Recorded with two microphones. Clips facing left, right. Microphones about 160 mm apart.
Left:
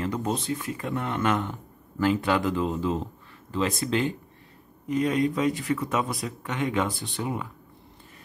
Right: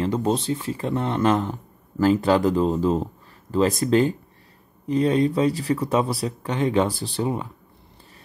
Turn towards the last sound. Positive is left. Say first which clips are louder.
# right 5 dB
turn(degrees=-35)  # may be behind; listen again after turning